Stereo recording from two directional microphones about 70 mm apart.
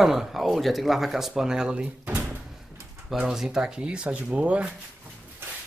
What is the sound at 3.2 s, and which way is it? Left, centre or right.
Speech, centre.